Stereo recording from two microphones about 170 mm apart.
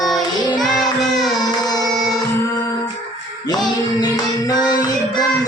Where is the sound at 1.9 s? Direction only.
Centre (ahead or behind).